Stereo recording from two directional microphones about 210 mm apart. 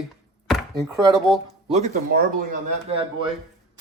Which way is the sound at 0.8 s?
15° right (ahead or behind).